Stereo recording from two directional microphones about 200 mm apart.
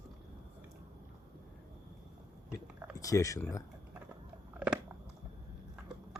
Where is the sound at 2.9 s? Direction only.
15° left (ahead or behind).